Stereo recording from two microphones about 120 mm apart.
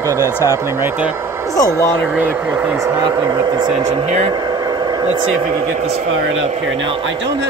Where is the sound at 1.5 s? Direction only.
30° left (ahead or behind).